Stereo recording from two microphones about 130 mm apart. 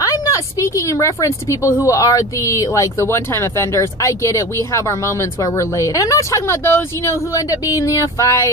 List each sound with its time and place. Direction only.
0.0 s a woman's voice: 25° left (ahead or behind)